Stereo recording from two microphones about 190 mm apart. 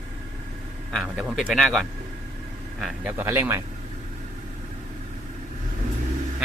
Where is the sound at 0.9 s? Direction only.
Centre (ahead or behind).